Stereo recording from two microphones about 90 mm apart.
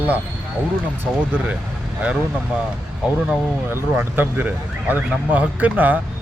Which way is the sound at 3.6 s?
25° right (ahead or behind).